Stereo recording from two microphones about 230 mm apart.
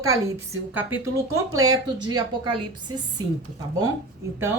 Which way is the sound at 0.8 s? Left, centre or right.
Centre.